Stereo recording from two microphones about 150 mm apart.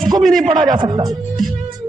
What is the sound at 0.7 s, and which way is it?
Speech, 30° right (ahead or behind).